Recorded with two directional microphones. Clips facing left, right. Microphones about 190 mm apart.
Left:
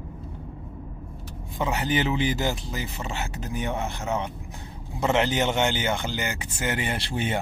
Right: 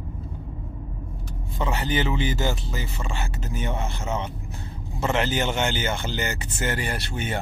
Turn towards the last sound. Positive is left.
turn(degrees=30)  # may be behind; listen again after turning